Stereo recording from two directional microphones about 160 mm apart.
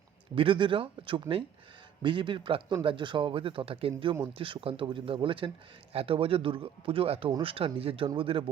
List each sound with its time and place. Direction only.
0.3 s speech: 30° right (ahead or behind)